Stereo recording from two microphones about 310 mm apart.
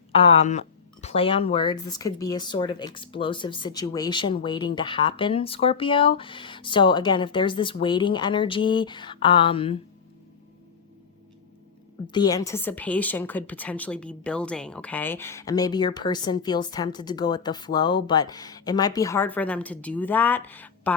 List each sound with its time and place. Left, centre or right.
0.1 s a woman's voice: centre
12.0 s a woman's voice: centre